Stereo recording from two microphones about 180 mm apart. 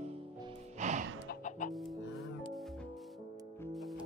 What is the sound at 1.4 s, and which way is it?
Chicken, 45° left (ahead or behind).